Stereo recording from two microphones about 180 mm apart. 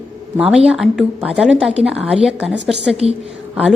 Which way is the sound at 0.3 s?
5° right (ahead or behind).